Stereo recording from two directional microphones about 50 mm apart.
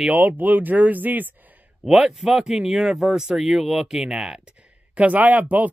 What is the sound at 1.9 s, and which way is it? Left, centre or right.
Speech, centre.